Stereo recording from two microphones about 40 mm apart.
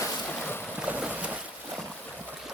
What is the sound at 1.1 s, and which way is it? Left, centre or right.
Boat, right.